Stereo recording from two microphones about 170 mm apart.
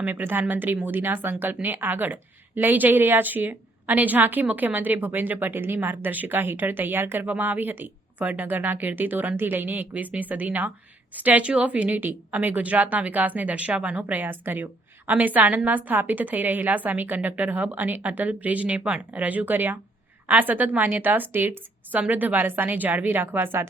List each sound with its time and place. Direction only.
0.0 s speech: 10° right (ahead or behind)